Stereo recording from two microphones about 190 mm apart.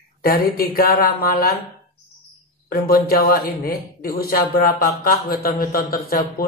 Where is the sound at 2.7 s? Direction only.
50° left (ahead or behind).